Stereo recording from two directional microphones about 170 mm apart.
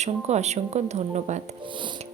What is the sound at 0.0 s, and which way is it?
A woman's voice, 40° right (ahead or behind).